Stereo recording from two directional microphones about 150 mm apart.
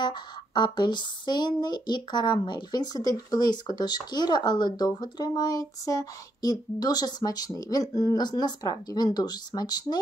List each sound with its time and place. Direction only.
0.0 s speech: 30° left (ahead or behind)